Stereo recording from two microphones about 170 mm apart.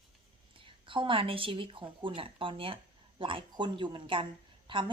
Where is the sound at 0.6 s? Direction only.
30° right (ahead or behind).